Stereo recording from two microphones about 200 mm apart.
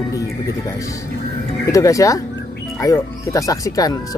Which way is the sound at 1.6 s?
15° left (ahead or behind).